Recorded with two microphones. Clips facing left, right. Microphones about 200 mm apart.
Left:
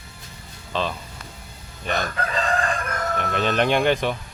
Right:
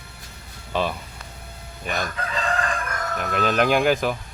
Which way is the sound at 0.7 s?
10° right (ahead or behind).